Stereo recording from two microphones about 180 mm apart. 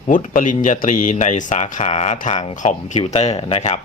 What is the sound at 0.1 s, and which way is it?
Speech, 45° left (ahead or behind).